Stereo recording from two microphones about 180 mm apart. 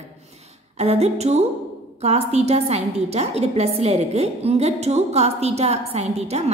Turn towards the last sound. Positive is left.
turn(degrees=-35)  # may be behind; listen again after turning